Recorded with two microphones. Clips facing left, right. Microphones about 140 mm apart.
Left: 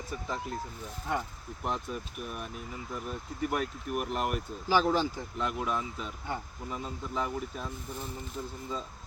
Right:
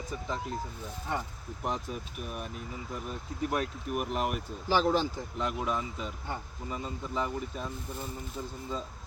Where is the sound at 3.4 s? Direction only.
Centre (ahead or behind).